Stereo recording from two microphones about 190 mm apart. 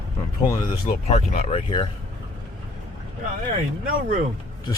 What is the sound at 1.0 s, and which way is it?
Speech, 35° left (ahead or behind).